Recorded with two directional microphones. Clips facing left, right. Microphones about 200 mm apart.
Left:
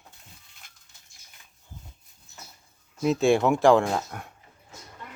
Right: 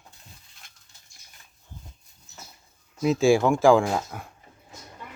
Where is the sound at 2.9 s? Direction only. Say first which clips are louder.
Right 2 dB; centre (ahead or behind).